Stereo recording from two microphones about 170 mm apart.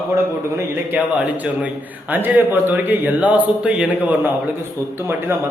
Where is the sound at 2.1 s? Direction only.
10° right (ahead or behind).